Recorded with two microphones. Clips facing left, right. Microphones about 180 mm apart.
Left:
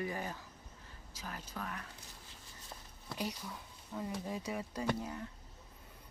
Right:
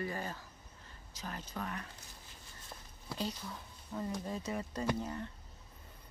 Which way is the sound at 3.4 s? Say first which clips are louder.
Right 1 dB; 5° left (ahead or behind).